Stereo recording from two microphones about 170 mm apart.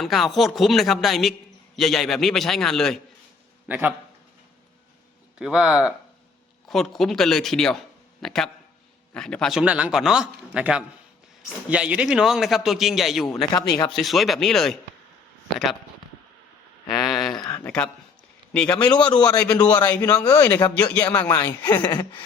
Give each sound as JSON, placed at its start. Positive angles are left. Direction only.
{"t": 0.0, "sound": "a man's voice", "side_deg": 0}
{"t": 3.7, "sound": "speech", "side_deg": -10}
{"t": 5.4, "sound": "a man's voice", "side_deg": -5}
{"t": 13.7, "sound": "a man's voice", "side_deg": 20}
{"t": 13.9, "sound": "a man's voice", "side_deg": 0}
{"t": 17.0, "sound": "a sound", "side_deg": 0}
{"t": 18.5, "sound": "a woman's voice", "side_deg": 5}
{"t": 18.8, "sound": "a man's voice", "side_deg": 25}
{"t": 19.9, "sound": "a woman's voice", "side_deg": 10}
{"t": 20.1, "sound": "a man's voice", "side_deg": 20}
{"t": 20.6, "sound": "a woman's voice", "side_deg": 10}